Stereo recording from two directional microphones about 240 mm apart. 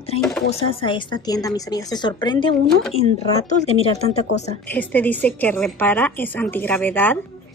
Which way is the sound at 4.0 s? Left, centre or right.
Left.